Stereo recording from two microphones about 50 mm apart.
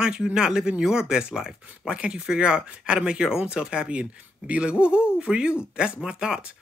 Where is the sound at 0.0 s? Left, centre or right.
Centre.